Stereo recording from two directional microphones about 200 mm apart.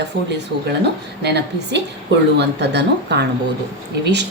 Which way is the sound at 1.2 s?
60° right (ahead or behind).